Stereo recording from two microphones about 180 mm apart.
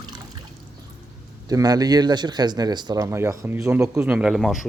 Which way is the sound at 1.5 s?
20° right (ahead or behind).